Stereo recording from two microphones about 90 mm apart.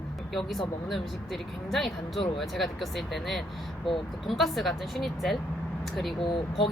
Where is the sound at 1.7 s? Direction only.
Centre (ahead or behind).